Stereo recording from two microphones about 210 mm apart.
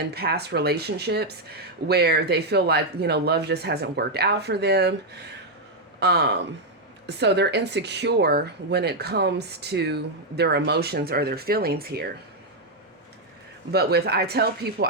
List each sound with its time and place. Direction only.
0.0 s speech: 50° right (ahead or behind)
6.0 s speech: 55° right (ahead or behind)
13.7 s speech: 50° right (ahead or behind)